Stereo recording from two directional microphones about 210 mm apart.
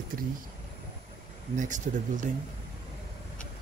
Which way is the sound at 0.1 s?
40° right (ahead or behind).